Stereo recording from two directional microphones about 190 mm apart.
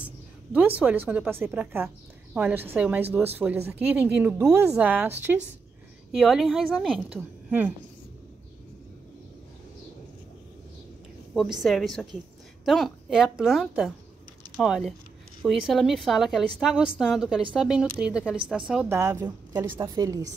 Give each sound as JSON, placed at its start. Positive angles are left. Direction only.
{"t": 0.6, "sound": "a woman's voice", "side_deg": -10}
{"t": 11.3, "sound": "a woman's voice", "side_deg": 0}
{"t": 18.9, "sound": "a woman's voice", "side_deg": -15}